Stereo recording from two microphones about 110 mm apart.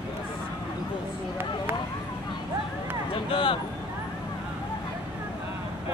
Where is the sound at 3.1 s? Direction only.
55° left (ahead or behind).